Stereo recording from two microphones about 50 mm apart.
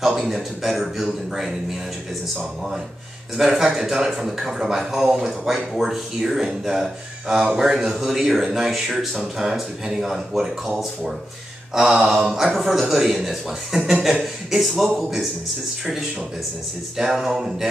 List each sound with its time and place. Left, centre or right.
0.3 s speech: centre
3.3 s speech: centre
11.7 s speech: centre
16.9 s speech: centre